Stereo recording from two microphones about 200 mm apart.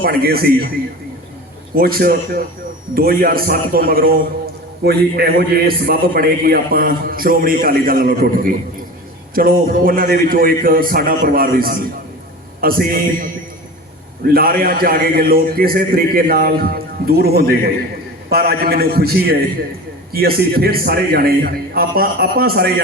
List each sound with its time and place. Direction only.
0.0 s a man's voice: 50° right (ahead or behind)
1.7 s a man's voice: 50° right (ahead or behind)
14.3 s a man's voice: 50° right (ahead or behind)